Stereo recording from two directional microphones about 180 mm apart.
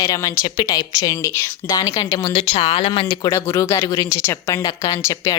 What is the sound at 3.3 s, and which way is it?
Speech, 15° left (ahead or behind).